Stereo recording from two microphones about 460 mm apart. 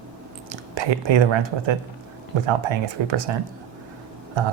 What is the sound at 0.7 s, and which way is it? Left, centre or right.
Speech, right.